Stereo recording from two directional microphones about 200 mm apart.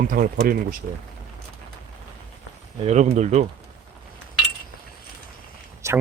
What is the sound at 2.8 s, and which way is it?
Speech, 35° right (ahead or behind).